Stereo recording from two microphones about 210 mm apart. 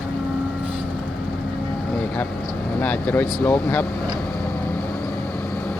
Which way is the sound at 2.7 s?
5° left (ahead or behind).